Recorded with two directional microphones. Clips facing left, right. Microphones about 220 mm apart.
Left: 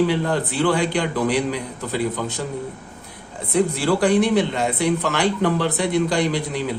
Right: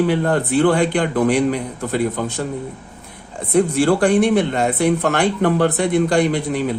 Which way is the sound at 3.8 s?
50° right (ahead or behind).